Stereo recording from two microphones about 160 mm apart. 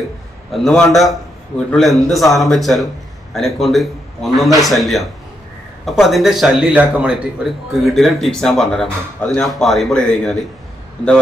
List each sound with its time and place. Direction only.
0.5 s a man's voice: centre (ahead or behind)